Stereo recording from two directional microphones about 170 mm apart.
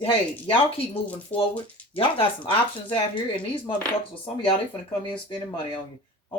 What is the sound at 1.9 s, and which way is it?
Speech, 30° left (ahead or behind).